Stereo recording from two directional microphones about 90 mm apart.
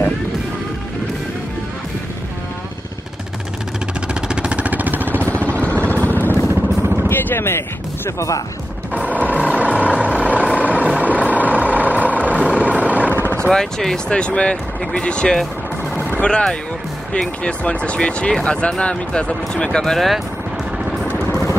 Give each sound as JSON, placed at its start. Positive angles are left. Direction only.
{"t": 4.1, "sound": "vehicle", "side_deg": -10}
{"t": 5.9, "sound": "vehicle", "side_deg": 20}
{"t": 6.4, "sound": "vehicle", "side_deg": -25}
{"t": 7.1, "sound": "a sound", "side_deg": 25}
{"t": 8.9, "sound": "vehicle", "side_deg": -15}
{"t": 13.1, "sound": "vehicle", "side_deg": 20}
{"t": 13.5, "sound": "speech", "side_deg": 5}
{"t": 16.0, "sound": "music", "side_deg": 15}
{"t": 17.1, "sound": "speech", "side_deg": 10}